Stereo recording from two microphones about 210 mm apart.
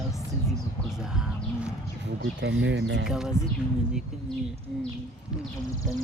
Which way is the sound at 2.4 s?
60° right (ahead or behind).